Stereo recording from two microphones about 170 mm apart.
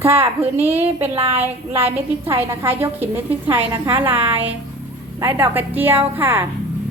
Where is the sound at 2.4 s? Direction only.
15° right (ahead or behind).